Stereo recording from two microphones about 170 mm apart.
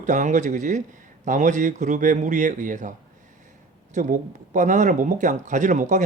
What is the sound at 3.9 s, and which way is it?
Speech, 45° right (ahead or behind).